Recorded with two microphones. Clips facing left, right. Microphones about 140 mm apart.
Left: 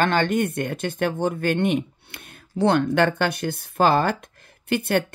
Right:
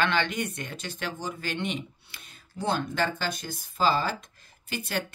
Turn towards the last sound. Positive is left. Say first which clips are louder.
# left 10 dB
turn(degrees=60)  # may be behind; listen again after turning